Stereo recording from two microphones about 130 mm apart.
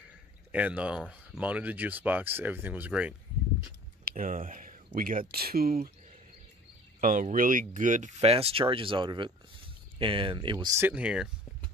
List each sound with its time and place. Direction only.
0.5 s speech: 10° right (ahead or behind)
4.0 s speech: 90° right
7.0 s speech: 90° right
8.2 s speech: 50° right (ahead or behind)
10.8 s speech: 10° right (ahead or behind)